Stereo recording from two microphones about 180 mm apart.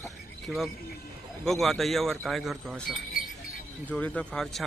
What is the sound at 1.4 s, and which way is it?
Speech, centre (ahead or behind).